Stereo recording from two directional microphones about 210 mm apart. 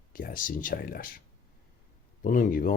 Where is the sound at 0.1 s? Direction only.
40° left (ahead or behind).